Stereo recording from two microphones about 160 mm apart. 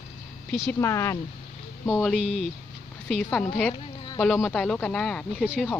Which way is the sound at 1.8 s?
Centre (ahead or behind).